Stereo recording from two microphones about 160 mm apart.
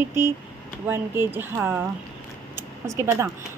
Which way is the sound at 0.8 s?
15° right (ahead or behind).